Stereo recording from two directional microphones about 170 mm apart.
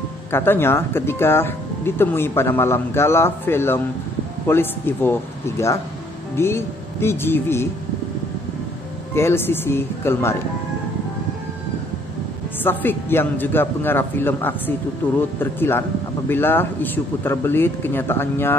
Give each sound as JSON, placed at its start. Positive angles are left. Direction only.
{"t": 0.3, "sound": "speech", "side_deg": 15}
{"t": 6.3, "sound": "speech", "side_deg": 15}
{"t": 9.1, "sound": "speech", "side_deg": 15}
{"t": 12.6, "sound": "speech", "side_deg": 10}